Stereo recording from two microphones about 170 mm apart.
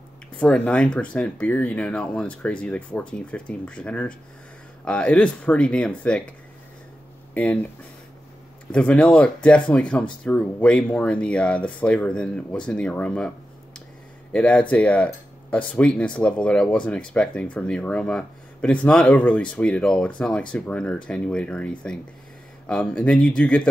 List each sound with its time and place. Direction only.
0.4 s speech: 5° left (ahead or behind)
8.7 s speech: 5° left (ahead or behind)
14.3 s speech: 5° left (ahead or behind)